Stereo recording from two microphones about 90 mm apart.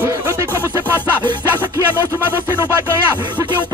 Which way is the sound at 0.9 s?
20° left (ahead or behind).